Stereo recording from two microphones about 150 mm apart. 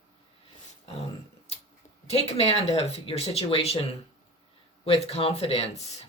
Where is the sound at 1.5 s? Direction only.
45° left (ahead or behind).